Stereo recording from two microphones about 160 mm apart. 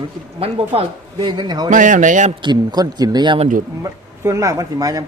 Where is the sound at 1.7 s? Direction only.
55° right (ahead or behind).